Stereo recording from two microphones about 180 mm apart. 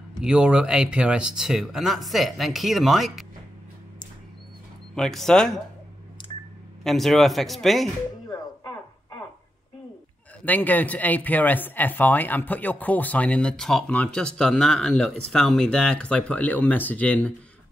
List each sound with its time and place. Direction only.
0.2 s speech: 5° right (ahead or behind)
4.9 s speech: centre (ahead or behind)
6.3 s telephone dialing: 20° left (ahead or behind)
6.8 s speech: centre (ahead or behind)
10.4 s speech: 10° left (ahead or behind)